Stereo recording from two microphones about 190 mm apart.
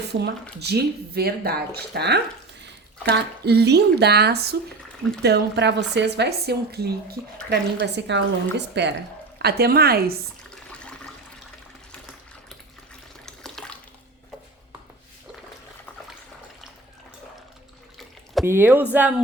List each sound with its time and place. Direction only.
0.1 s a woman's voice: 65° right (ahead or behind)
10.7 s toilet flush: 5° left (ahead or behind)
13.2 s water: 5° left (ahead or behind)
18.4 s speech: 10° right (ahead or behind)